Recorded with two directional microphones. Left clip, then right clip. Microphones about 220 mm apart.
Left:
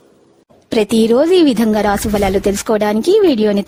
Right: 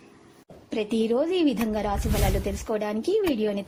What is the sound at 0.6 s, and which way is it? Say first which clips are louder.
Speech: left 13 dB; 55° left (ahead or behind).